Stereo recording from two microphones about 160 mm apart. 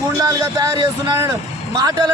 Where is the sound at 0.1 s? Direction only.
20° right (ahead or behind).